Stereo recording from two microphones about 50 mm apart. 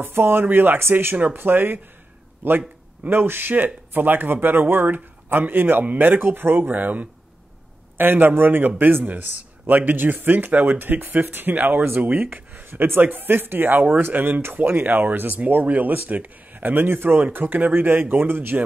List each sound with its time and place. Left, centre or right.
0.0 s speech: right